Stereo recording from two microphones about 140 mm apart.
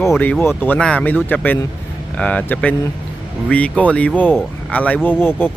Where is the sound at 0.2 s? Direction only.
15° left (ahead or behind).